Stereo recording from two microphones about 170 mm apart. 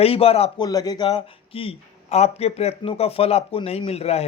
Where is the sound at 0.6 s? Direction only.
20° left (ahead or behind).